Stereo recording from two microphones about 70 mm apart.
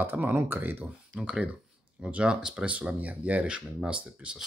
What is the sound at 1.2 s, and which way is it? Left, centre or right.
Speech, centre.